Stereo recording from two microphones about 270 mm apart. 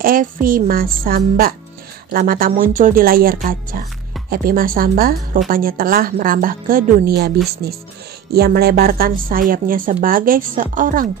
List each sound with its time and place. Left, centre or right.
0.0 s a woman's voice: right